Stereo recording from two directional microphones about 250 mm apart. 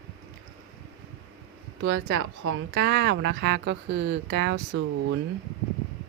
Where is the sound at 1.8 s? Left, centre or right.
Right.